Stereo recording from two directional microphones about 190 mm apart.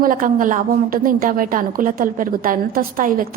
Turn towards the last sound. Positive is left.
turn(degrees=-50)  # may be behind; listen again after turning